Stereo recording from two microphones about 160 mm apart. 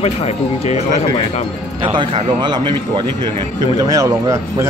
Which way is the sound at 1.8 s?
30° right (ahead or behind).